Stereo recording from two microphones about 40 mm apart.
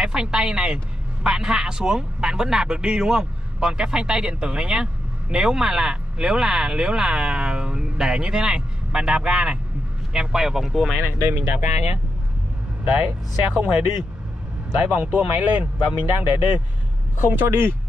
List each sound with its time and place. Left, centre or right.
0.0 s speech: right
10.1 s speech: centre
11.2 s speech: right
13.0 s speech: right
14.8 s speech: right
17.3 s speech: right